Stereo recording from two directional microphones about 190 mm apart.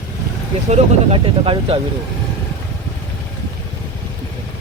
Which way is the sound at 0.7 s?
30° right (ahead or behind).